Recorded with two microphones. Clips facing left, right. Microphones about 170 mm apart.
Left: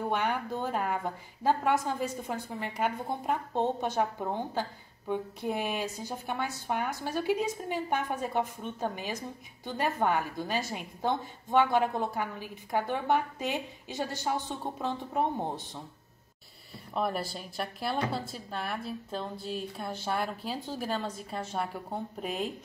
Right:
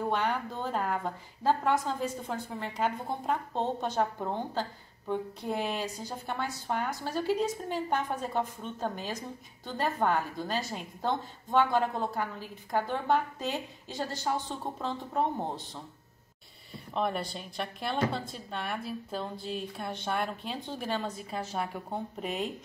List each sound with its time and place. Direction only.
0.1 s a woman's voice: 10° left (ahead or behind)
16.9 s a woman's voice: 5° left (ahead or behind)